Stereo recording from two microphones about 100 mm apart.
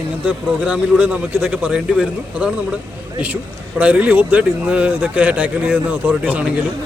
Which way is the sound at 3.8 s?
15° right (ahead or behind).